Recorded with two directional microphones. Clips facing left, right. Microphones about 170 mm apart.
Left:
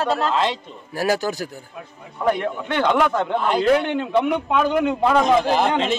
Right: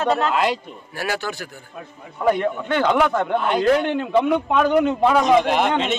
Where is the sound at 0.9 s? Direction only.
35° left (ahead or behind).